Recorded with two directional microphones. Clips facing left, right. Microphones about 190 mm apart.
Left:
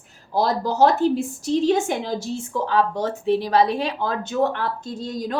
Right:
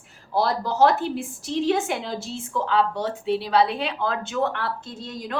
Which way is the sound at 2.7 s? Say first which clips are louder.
Left 2 dB; 45° left (ahead or behind).